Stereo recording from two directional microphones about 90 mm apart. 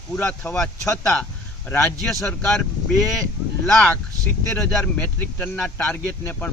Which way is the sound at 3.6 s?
10° left (ahead or behind).